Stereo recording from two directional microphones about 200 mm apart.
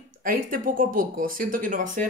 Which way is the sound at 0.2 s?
45° right (ahead or behind).